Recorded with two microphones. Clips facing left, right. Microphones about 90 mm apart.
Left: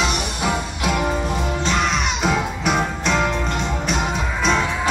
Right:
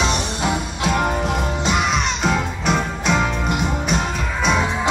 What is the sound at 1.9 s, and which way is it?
Music, centre (ahead or behind).